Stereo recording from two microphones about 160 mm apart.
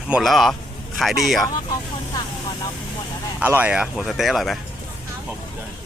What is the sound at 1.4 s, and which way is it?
Speech, 25° left (ahead or behind).